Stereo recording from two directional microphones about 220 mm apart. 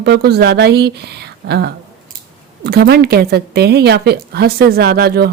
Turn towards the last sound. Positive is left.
turn(degrees=-45)  # may be behind; listen again after turning